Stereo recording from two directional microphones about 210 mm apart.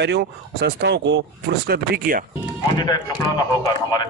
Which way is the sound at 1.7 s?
45° right (ahead or behind).